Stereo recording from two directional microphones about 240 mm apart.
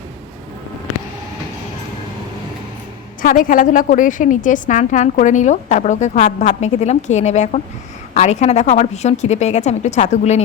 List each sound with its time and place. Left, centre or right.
3.2 s a woman's voice: left